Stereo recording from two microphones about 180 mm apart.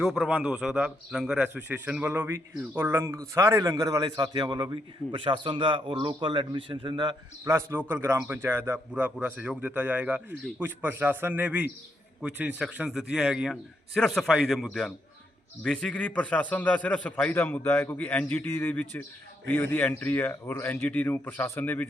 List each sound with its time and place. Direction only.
0.0 s a man's voice: 5° right (ahead or behind)